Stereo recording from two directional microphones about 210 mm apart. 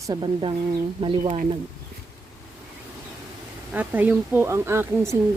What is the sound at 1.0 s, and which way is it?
Speech, 30° right (ahead or behind).